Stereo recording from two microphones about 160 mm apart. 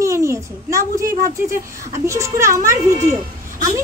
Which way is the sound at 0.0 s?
20° right (ahead or behind).